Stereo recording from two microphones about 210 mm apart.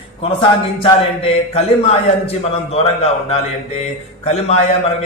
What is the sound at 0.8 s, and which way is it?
A man's voice, 30° left (ahead or behind).